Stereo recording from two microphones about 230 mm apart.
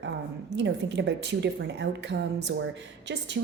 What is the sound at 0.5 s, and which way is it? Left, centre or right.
A woman's voice, right.